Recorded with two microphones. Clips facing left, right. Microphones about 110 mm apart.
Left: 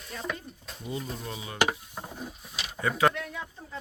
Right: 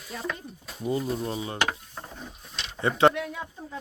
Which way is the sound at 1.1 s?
35° right (ahead or behind).